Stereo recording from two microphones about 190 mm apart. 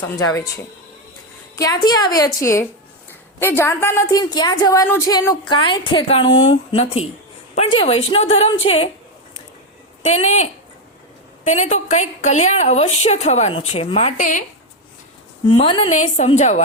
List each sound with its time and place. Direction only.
0.2 s a woman's voice: 15° left (ahead or behind)
10.0 s a woman's voice: 35° left (ahead or behind)
15.4 s a woman's voice: 25° left (ahead or behind)
15.9 s a woman's voice: 40° left (ahead or behind)